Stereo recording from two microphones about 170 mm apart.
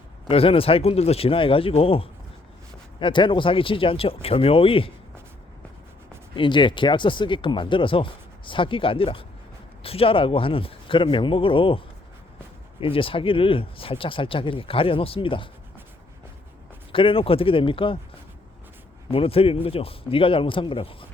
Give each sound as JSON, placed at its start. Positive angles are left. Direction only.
{"t": 0.3, "sound": "speech", "side_deg": 35}
{"t": 6.3, "sound": "speech", "side_deg": 30}
{"t": 12.8, "sound": "speech", "side_deg": 30}
{"t": 16.9, "sound": "speech", "side_deg": 30}
{"t": 19.1, "sound": "speech", "side_deg": 35}